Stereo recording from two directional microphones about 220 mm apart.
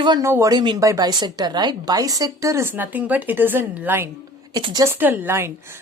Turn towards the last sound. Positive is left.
turn(degrees=-10)  # may be behind; listen again after turning